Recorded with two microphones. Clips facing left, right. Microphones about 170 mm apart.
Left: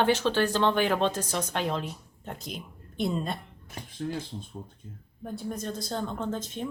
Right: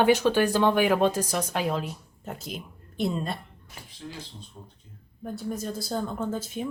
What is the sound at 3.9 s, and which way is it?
Speech, 50° left (ahead or behind).